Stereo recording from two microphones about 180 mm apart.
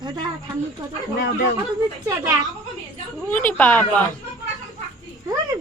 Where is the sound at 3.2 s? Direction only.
10° left (ahead or behind).